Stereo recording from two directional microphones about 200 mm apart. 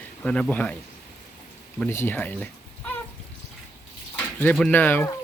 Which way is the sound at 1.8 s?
10° left (ahead or behind).